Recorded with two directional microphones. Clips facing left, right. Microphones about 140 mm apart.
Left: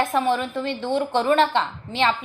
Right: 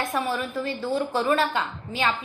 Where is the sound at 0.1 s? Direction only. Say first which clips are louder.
Left 5 dB; 25° left (ahead or behind).